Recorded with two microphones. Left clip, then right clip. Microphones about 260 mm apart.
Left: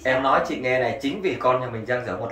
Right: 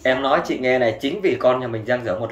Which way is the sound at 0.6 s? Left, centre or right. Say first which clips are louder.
Right 4 dB; right.